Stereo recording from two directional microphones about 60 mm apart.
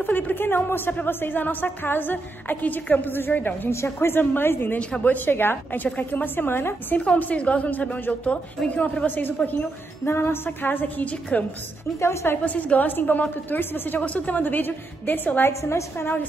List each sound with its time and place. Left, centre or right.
0.0 s a woman's voice: left
3.7 s a woman's voice: left
4.2 s a woman's voice: left
4.7 s a woman's voice: centre
5.1 s a woman's voice: left
7.2 s a woman's voice: left
10.0 s a woman's voice: left
12.0 s a woman's voice: left
12.4 s a woman's voice: left
15.6 s a woman's voice: left